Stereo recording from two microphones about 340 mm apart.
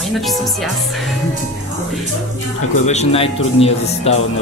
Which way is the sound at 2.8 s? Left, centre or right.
Centre.